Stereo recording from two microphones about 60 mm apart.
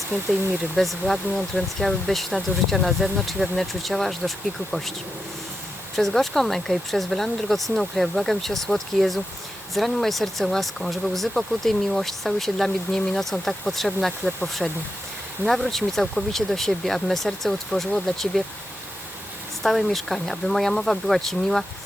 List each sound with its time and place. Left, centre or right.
0.1 s speech: centre
0.8 s speech: centre
6.0 s speech: centre
19.6 s speech: centre